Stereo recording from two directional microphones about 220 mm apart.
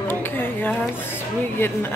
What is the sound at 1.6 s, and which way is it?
Speech, 10° left (ahead or behind).